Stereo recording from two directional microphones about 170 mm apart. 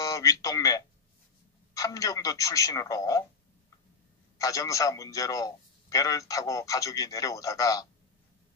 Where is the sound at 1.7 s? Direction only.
20° left (ahead or behind).